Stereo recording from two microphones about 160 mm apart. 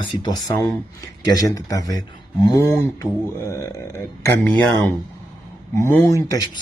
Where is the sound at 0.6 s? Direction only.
20° left (ahead or behind).